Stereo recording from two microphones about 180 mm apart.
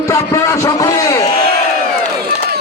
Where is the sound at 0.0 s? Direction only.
15° left (ahead or behind).